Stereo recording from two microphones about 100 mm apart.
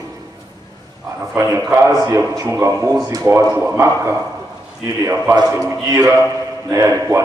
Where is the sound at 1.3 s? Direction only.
25° right (ahead or behind).